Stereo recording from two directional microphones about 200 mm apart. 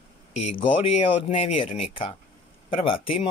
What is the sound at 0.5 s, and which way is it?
Speech, 25° left (ahead or behind).